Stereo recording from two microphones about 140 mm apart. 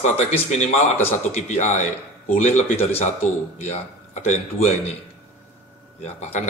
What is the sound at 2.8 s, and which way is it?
Speech, 45° left (ahead or behind).